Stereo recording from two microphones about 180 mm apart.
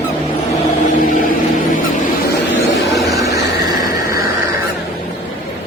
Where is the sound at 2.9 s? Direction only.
Centre (ahead or behind).